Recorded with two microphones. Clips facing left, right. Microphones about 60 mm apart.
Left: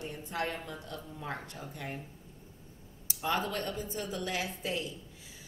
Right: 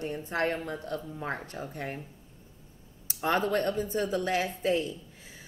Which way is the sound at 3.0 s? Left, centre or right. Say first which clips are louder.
Right 5 dB; right.